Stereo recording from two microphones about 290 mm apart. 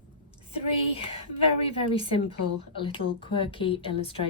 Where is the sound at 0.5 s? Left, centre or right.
Centre.